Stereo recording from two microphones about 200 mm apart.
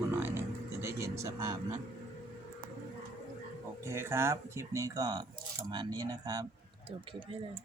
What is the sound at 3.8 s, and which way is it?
Speech, 15° right (ahead or behind).